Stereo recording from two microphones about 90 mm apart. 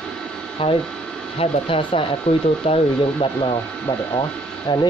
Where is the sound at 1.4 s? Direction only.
75° left (ahead or behind).